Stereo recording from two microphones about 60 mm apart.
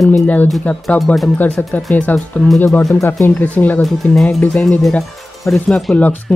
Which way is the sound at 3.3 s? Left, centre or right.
Left.